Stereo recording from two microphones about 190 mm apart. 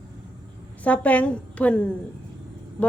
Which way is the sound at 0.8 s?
5° left (ahead or behind).